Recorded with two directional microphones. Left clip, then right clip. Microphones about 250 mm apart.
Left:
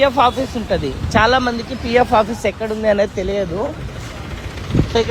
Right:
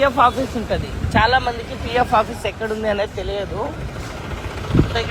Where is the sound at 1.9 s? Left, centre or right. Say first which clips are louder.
Left 3 dB; left.